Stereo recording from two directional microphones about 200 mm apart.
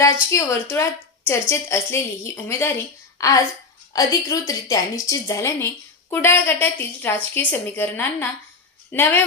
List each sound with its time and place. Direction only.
0.3 s a woman's voice: 15° left (ahead or behind)